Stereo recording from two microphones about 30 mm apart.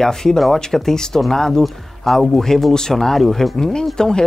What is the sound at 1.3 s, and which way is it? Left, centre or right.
Speech, centre.